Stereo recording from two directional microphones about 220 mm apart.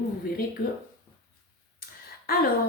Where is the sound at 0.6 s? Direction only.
45° left (ahead or behind).